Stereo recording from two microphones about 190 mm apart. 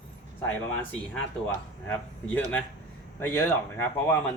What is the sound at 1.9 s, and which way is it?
Speech, 5° left (ahead or behind).